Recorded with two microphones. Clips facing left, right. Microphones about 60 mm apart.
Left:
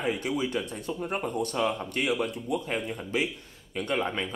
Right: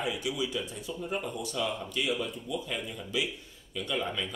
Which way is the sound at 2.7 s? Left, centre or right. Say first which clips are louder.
Left 5 dB; left.